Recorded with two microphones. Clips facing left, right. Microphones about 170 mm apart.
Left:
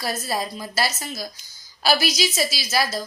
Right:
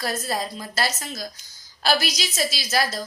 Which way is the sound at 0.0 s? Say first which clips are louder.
Even; 5° left (ahead or behind).